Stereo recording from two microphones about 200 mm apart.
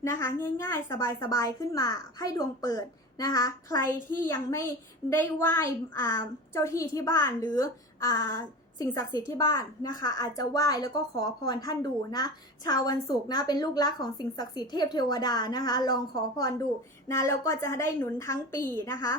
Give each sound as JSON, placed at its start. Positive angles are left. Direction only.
{"t": 0.0, "sound": "a woman's voice", "side_deg": 15}